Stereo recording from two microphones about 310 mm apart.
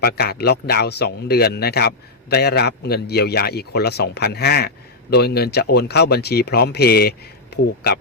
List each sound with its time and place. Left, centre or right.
0.0 s speech: left